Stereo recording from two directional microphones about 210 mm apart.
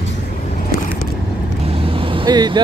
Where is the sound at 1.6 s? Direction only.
25° right (ahead or behind).